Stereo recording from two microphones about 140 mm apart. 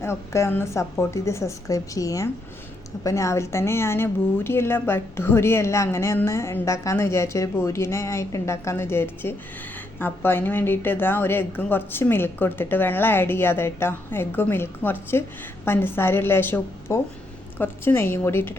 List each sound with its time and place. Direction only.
0.0 s a woman's voice: 20° left (ahead or behind)